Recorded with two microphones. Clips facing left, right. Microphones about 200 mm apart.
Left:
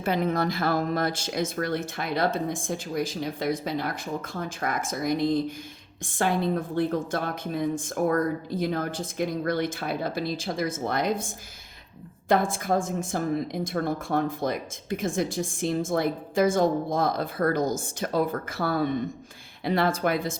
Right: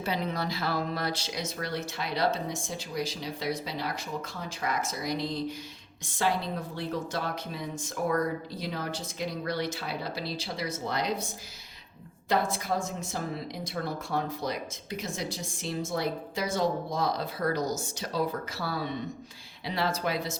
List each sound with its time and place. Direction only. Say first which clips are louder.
0.0 s a woman's voice: left 6 dB; 50° left (ahead or behind)
12.3 s a woman's voice: left 5 dB; 50° left (ahead or behind)